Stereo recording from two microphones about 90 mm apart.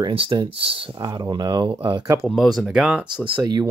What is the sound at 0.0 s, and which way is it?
Speech, 85° right.